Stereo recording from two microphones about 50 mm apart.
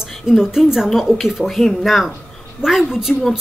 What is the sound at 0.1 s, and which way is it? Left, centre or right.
A woman's voice, centre.